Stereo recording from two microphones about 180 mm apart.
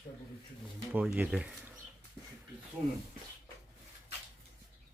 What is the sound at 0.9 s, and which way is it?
Speech, 10° right (ahead or behind).